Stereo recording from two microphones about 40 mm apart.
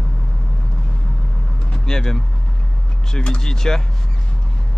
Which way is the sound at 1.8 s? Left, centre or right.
Centre.